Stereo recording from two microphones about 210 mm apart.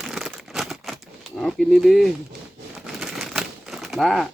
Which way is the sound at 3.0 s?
Centre (ahead or behind).